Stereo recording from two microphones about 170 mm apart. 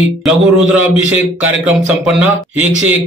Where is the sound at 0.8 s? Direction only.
10° right (ahead or behind).